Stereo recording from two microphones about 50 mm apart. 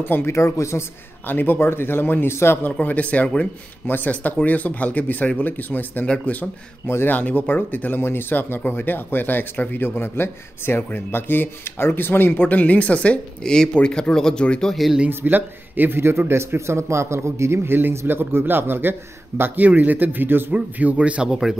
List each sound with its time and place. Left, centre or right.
0.0 s speech: left
0.3 s speech: left
1.2 s speech: left
2.6 s speech: left
3.8 s speech: left
4.1 s speech: left
7.1 s speech: left
12.4 s a woman's voice: left
15.0 s a man's voice: right
17.9 s a man's voice: right
20.5 s speech: right
21.3 s speech: centre